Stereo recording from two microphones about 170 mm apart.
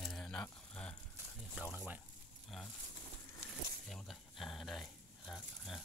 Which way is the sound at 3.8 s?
Centre (ahead or behind).